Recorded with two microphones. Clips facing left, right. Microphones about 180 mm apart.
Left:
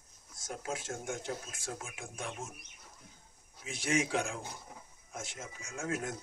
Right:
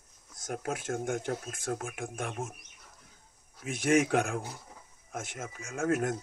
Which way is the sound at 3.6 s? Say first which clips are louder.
Right 7 dB; 55° right (ahead or behind).